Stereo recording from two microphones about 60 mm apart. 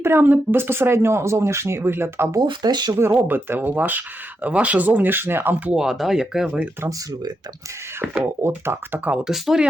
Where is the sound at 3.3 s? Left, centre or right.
Right.